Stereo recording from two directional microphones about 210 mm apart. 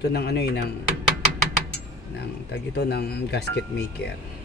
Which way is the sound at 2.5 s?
50° left (ahead or behind).